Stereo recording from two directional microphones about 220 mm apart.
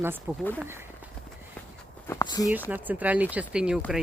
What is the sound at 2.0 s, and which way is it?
Speech, 15° left (ahead or behind).